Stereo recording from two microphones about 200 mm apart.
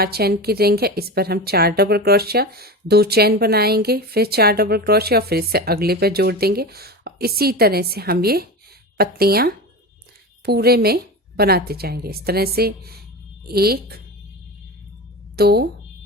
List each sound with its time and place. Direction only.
0.0 s a woman's voice: 50° right (ahead or behind)
15.4 s a woman's voice: 55° right (ahead or behind)